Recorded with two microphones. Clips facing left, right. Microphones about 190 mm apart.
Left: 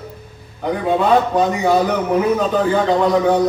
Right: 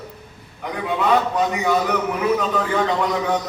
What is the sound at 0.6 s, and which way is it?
A man's voice, 30° left (ahead or behind).